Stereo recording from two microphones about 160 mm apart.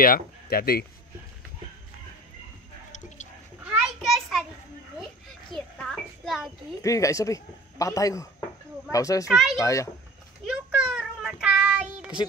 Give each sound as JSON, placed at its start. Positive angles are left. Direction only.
{"t": 0.0, "sound": "speech", "side_deg": 65}
{"t": 2.9, "sound": "a sound", "side_deg": 50}
{"t": 3.6, "sound": "children playing", "side_deg": -5}
{"t": 5.5, "sound": "a sound", "side_deg": 0}
{"t": 6.8, "sound": "a man's voice", "side_deg": 20}
{"t": 9.3, "sound": "speech", "side_deg": 0}
{"t": 9.6, "sound": "a man's voice", "side_deg": 20}
{"t": 10.4, "sound": "child singing", "side_deg": -5}